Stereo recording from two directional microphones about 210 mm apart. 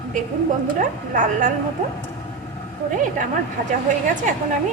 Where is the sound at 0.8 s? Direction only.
40° right (ahead or behind).